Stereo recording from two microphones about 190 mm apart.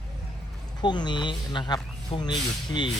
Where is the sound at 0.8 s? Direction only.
25° left (ahead or behind).